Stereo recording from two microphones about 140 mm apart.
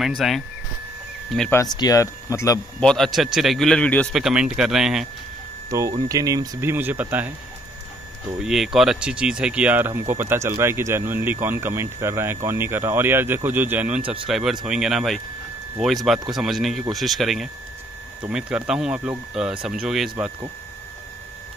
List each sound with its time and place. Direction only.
0.2 s speech: centre (ahead or behind)
1.5 s speech: 25° left (ahead or behind)
2.8 s speech: 5° left (ahead or behind)
4.1 s speech: 5° right (ahead or behind)
5.7 s speech: 25° right (ahead or behind)
8.4 s speech: 5° right (ahead or behind)